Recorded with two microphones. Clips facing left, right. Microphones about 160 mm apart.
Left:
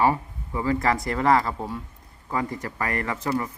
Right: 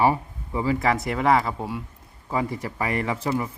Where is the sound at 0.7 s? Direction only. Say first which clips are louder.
Even; centre (ahead or behind).